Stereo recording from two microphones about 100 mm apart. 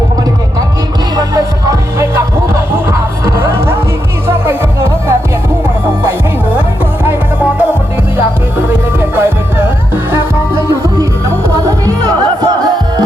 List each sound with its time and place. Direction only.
1.1 s music: 35° right (ahead or behind); by 9.6 s 20° right (ahead or behind)
11.5 s music: 35° right (ahead or behind)